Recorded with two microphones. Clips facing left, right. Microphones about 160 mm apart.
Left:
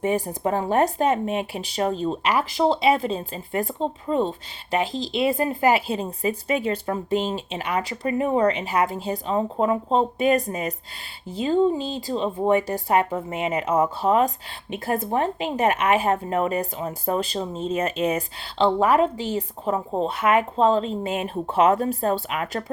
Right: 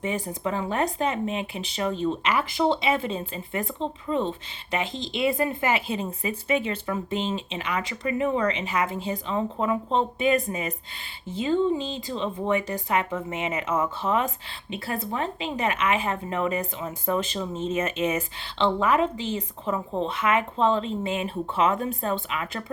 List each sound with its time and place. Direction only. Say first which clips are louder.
0.0 s a woman's voice: left 5 dB; 45° left (ahead or behind)